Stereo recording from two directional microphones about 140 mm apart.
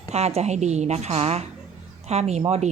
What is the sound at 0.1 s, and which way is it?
Speech, 50° right (ahead or behind).